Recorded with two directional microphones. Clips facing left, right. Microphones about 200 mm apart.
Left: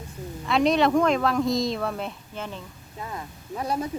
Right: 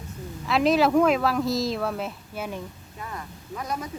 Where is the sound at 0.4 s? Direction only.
Centre (ahead or behind).